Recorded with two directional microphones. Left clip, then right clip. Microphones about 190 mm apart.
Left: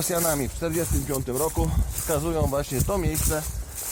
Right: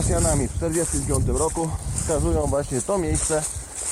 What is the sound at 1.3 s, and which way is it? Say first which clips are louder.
Speech: right 2 dB; centre (ahead or behind).